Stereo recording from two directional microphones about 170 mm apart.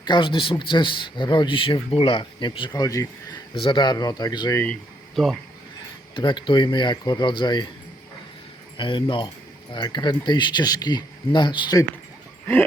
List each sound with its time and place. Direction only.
0.0 s speech: 25° left (ahead or behind)
4.6 s speech: 5° left (ahead or behind)
6.1 s speech: 30° left (ahead or behind)
8.8 s speech: 30° left (ahead or behind)